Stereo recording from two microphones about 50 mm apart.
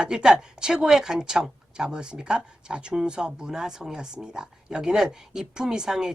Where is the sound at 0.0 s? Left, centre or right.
Centre.